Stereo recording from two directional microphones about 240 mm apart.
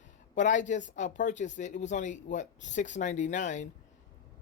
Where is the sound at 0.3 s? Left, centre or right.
Left.